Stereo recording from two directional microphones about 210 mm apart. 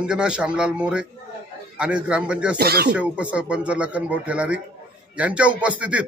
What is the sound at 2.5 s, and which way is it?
Speech, 50° right (ahead or behind).